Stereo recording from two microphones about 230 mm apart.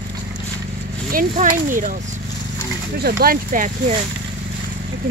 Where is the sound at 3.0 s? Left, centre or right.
Right.